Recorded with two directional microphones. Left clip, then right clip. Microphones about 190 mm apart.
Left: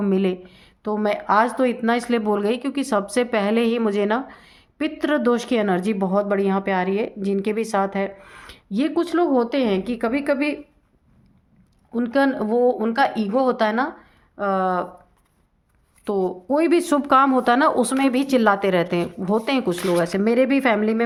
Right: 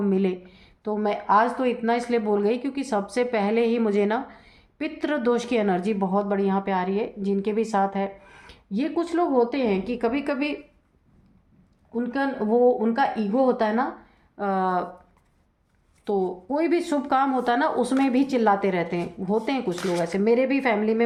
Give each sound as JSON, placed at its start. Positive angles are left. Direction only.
{"t": 0.0, "sound": "speech", "side_deg": 35}
{"t": 11.9, "sound": "speech", "side_deg": 55}
{"t": 14.3, "sound": "speech", "side_deg": 20}
{"t": 16.0, "sound": "speech", "side_deg": 35}